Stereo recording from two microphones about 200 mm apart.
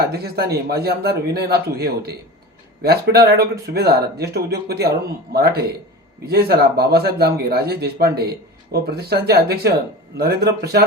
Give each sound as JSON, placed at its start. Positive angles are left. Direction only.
{"t": 0.1, "sound": "speech", "side_deg": -55}